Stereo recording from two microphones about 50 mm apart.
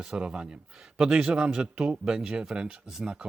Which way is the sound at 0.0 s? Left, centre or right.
Centre.